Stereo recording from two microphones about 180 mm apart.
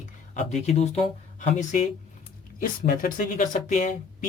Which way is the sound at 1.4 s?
45° left (ahead or behind).